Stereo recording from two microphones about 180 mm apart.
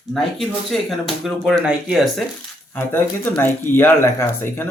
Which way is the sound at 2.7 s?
10° left (ahead or behind).